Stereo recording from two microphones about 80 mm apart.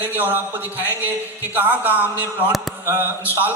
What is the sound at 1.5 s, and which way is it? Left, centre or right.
Speech, right.